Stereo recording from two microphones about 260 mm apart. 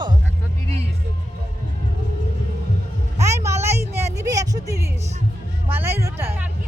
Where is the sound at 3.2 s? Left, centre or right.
Centre.